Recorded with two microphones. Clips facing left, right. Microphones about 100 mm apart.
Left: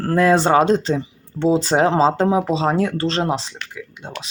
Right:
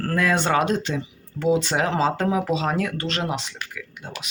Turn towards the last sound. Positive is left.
turn(degrees=35)  # may be behind; listen again after turning